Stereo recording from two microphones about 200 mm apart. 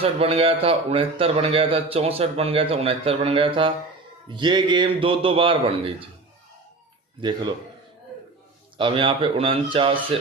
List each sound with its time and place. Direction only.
0.0 s a man's voice: 30° right (ahead or behind)
8.8 s a man's voice: 25° right (ahead or behind)